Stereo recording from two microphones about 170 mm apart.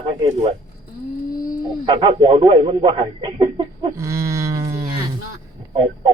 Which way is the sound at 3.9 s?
15° right (ahead or behind).